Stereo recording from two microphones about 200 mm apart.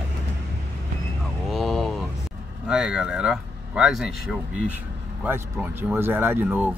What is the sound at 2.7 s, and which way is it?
Speech, 5° right (ahead or behind).